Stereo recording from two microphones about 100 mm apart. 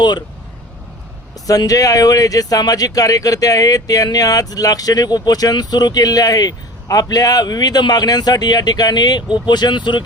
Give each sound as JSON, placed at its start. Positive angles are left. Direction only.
{"t": 1.5, "sound": "speech", "side_deg": 35}